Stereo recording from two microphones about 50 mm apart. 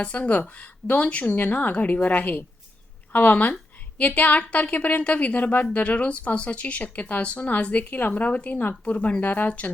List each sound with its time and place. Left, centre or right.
0.0 s a woman's voice: left
8.8 s speech: left